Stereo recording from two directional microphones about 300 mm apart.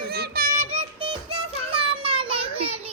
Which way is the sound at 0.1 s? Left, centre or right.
Right.